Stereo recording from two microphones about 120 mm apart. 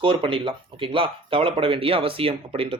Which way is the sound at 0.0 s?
45° right (ahead or behind).